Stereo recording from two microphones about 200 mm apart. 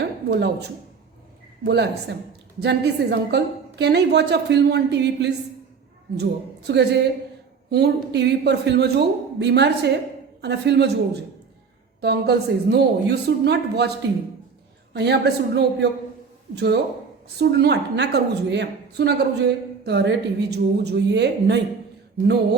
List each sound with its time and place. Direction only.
0.3 s a woman's voice: 55° right (ahead or behind)
11.9 s a woman's voice: 55° right (ahead or behind)
14.9 s a woman's voice: 55° right (ahead or behind)